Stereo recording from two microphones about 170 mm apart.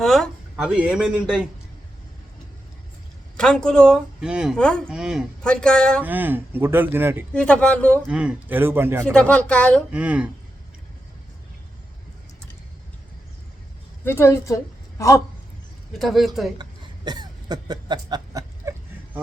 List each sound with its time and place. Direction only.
0.0 s speech: centre (ahead or behind)
3.3 s speech: 5° left (ahead or behind)
6.0 s speech: 10° right (ahead or behind)
7.3 s a man's voice: 5° left (ahead or behind)
8.0 s speech: 5° right (ahead or behind)
9.1 s a man's voice: 5° left (ahead or behind)
9.9 s speech: 5° right (ahead or behind)
14.0 s a woman's voice: 15° left (ahead or behind)
15.9 s speech: centre (ahead or behind)
16.6 s a sound: 25° right (ahead or behind)